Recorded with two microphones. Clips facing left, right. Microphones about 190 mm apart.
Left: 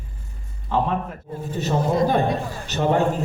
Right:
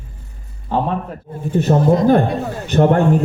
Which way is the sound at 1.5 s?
55° right (ahead or behind).